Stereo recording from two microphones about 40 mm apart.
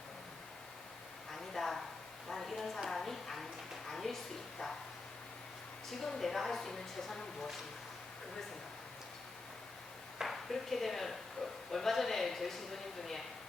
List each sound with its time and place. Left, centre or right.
1.3 s a sound: centre
5.9 s a woman's voice: centre
10.2 s speech: centre